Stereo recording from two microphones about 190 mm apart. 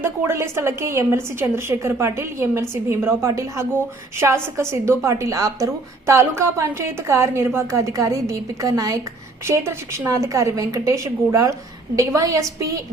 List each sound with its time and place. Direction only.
0.0 s a woman's voice: 15° right (ahead or behind)